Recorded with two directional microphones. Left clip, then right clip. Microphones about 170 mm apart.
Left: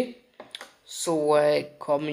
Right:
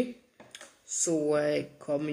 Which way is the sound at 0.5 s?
15° right (ahead or behind).